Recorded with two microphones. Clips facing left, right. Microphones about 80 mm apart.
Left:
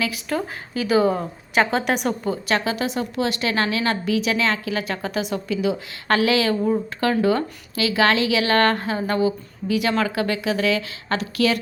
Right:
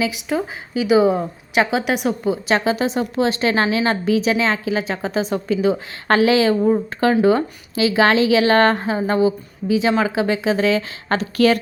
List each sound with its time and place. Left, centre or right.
0.0 s a woman's voice: centre
2.5 s a woman's voice: right